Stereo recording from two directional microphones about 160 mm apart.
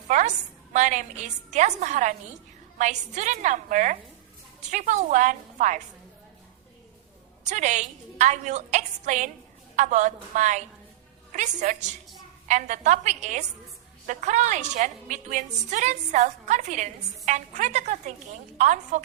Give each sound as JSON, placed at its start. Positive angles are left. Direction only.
{"t": 0.1, "sound": "a woman's voice", "side_deg": -50}
{"t": 7.4, "sound": "a woman's voice", "side_deg": -50}